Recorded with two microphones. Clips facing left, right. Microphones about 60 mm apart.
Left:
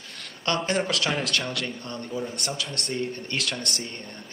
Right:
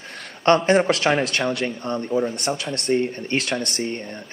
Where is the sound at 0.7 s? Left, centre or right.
Right.